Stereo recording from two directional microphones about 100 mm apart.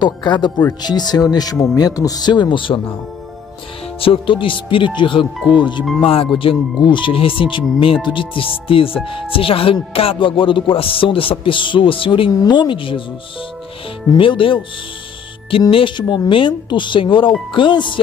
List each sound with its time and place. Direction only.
0.0 s speech: 50° left (ahead or behind)
4.0 s speech: 60° left (ahead or behind)
6.0 s speech: 65° left (ahead or behind)
14.1 s speech: 60° left (ahead or behind)
15.7 s speech: 55° left (ahead or behind)